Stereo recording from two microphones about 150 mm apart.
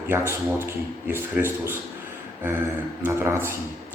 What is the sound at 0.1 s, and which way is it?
A man's voice, 15° right (ahead or behind).